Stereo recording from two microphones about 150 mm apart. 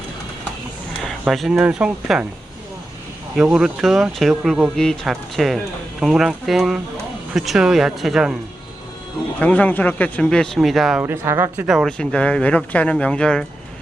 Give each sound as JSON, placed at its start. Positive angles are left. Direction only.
{"t": 1.3, "sound": "speech", "side_deg": 0}
{"t": 3.5, "sound": "speech", "side_deg": -5}
{"t": 9.4, "sound": "speech", "side_deg": 10}
{"t": 11.0, "sound": "speech", "side_deg": -15}
{"t": 11.7, "sound": "speech", "side_deg": 0}